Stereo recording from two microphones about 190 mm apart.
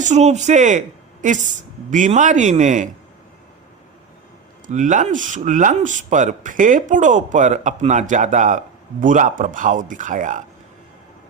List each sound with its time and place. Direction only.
0.0 s speech: 40° right (ahead or behind)
4.6 s speech: 40° right (ahead or behind)